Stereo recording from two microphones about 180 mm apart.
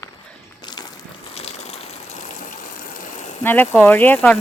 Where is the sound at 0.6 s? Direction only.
25° left (ahead or behind).